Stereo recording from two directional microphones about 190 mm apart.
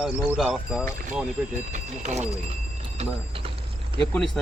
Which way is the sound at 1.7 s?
35° right (ahead or behind).